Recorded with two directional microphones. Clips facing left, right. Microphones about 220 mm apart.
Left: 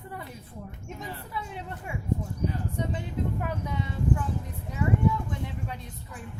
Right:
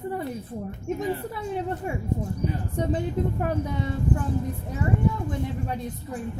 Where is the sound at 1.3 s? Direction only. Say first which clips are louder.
Right 8 dB; 45° right (ahead or behind).